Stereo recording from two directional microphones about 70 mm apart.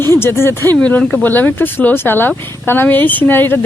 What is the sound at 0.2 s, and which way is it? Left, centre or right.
Speech, left.